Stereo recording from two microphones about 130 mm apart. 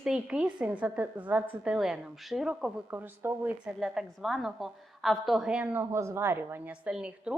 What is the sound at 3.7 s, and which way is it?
A woman's voice, centre (ahead or behind).